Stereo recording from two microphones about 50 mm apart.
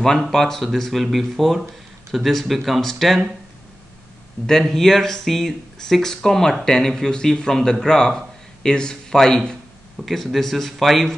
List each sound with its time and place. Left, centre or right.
0.3 s a man's voice: centre
4.5 s a man's voice: centre